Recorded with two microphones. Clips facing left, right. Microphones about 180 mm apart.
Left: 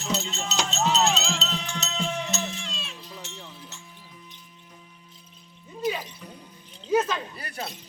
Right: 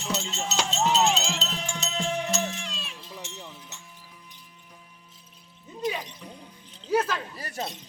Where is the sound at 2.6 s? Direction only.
10° right (ahead or behind).